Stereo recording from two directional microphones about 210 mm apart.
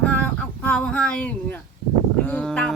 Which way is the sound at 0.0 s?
5° left (ahead or behind).